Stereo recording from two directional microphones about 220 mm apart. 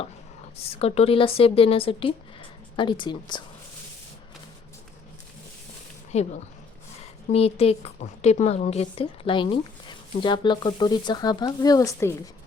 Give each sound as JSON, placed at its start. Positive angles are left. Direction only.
{"t": 0.5, "sound": "a woman's voice", "side_deg": 25}
{"t": 6.1, "sound": "a woman's voice", "side_deg": 30}
{"t": 7.3, "sound": "a woman's voice", "side_deg": 25}